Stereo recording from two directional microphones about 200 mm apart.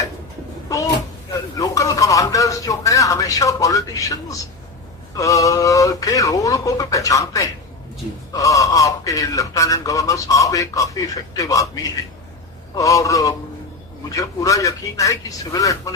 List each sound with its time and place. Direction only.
1.3 s speech: 15° left (ahead or behind)